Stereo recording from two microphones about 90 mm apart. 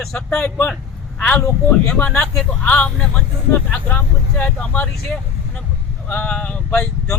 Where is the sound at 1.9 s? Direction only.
10° left (ahead or behind).